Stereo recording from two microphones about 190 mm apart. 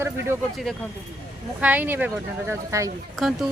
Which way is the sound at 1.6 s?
10° right (ahead or behind).